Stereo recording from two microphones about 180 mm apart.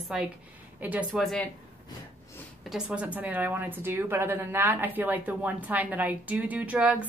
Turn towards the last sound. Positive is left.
turn(degrees=-5)  # may be behind; listen again after turning